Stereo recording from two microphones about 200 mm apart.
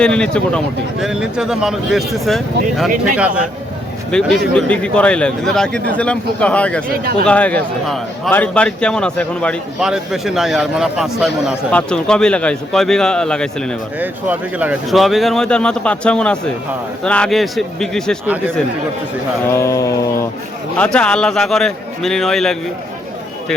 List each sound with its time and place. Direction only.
0.0 s a man's voice: 5° left (ahead or behind)
6.8 s speech: 45° right (ahead or behind)
7.3 s a man's voice: 5° left (ahead or behind)
14.0 s a man's voice: 10° right (ahead or behind)
19.5 s speech: 15° left (ahead or behind)
20.7 s a man's voice: 5° left (ahead or behind)